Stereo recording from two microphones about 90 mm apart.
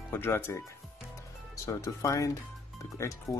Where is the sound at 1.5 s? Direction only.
35° left (ahead or behind).